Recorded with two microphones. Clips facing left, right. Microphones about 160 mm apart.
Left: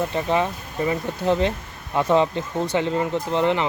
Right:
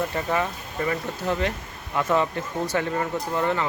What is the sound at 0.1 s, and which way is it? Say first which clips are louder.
Speech: left 4 dB; 20° left (ahead or behind).